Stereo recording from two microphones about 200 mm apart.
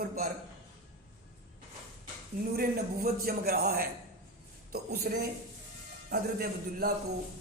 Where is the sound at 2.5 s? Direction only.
50° right (ahead or behind).